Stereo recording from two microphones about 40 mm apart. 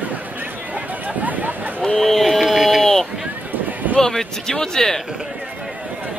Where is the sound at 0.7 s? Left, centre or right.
Right.